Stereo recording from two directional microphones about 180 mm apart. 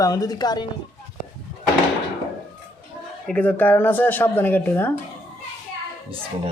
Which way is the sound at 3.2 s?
10° left (ahead or behind).